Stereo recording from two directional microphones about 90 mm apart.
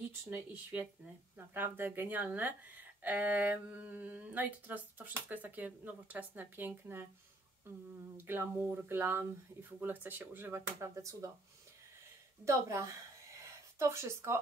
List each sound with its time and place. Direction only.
0.3 s speech: 20° right (ahead or behind)
8.3 s speech: 25° right (ahead or behind)
10.8 s speech: 35° right (ahead or behind)
12.4 s speech: 35° right (ahead or behind)